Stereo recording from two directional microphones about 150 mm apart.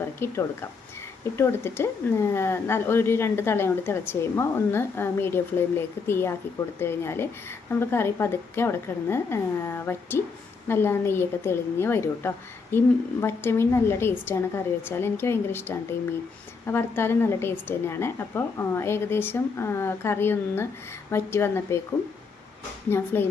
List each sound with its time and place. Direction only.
0.0 s a sound: 15° left (ahead or behind)
1.4 s a woman's voice: 15° left (ahead or behind)
22.9 s a woman's voice: 15° left (ahead or behind)